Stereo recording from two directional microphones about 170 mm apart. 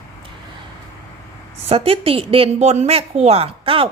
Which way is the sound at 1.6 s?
35° right (ahead or behind).